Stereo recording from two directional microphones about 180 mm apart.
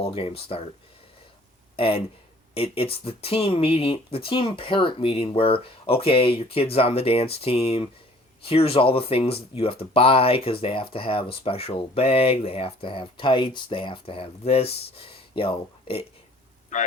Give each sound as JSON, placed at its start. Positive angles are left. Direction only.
{"t": 0.0, "sound": "speech", "side_deg": 30}
{"t": 1.7, "sound": "speech", "side_deg": 30}
{"t": 16.7, "sound": "speech", "side_deg": 45}